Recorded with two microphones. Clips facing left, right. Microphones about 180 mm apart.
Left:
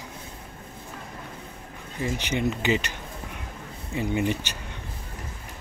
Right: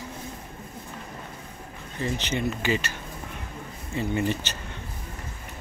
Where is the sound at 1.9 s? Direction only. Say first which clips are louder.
Left 1 dB; 15° left (ahead or behind).